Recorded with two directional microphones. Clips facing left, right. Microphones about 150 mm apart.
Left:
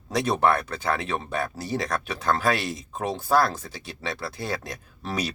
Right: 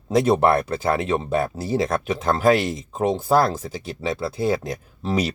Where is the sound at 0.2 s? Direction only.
25° right (ahead or behind).